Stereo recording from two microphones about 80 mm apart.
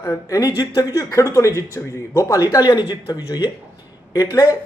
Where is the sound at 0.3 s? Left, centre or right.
Left.